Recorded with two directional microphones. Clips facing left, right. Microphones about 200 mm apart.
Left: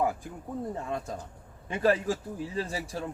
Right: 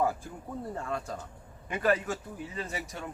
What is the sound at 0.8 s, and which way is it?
A man's voice, 20° left (ahead or behind).